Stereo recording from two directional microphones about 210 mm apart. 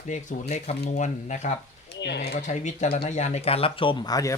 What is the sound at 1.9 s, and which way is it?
Speech, 55° left (ahead or behind).